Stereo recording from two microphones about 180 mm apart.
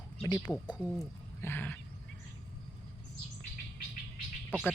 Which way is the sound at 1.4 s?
10° left (ahead or behind).